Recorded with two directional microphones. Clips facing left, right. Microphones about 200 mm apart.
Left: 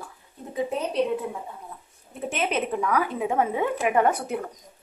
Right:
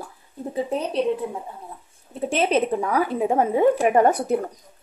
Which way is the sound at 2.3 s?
30° right (ahead or behind).